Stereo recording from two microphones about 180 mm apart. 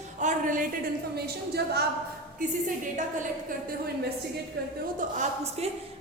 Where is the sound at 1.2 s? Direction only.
65° right (ahead or behind).